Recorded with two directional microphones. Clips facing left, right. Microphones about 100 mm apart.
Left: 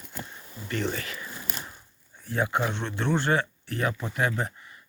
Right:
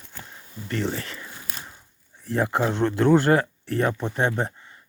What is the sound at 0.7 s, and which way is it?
Speech, 35° right (ahead or behind).